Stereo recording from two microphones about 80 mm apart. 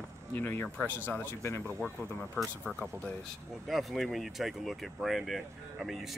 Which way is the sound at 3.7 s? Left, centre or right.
Centre.